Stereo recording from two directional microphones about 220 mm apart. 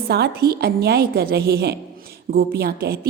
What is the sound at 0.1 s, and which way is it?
A woman's voice, 45° right (ahead or behind).